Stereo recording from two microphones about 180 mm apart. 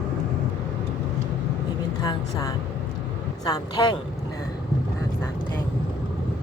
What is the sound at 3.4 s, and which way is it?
Speech, 20° left (ahead or behind).